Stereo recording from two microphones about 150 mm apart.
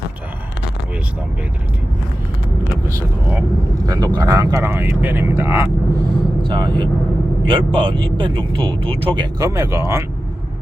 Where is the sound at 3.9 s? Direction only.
25° right (ahead or behind).